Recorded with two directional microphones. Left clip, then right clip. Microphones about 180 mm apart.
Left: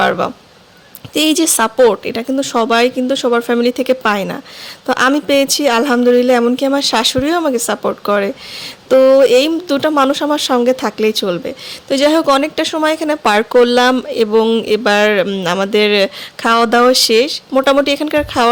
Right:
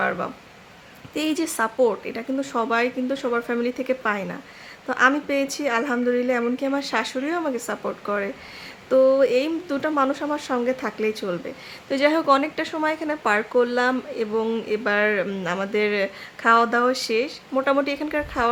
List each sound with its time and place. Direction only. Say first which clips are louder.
0.0 s speech: left 11 dB; 50° left (ahead or behind)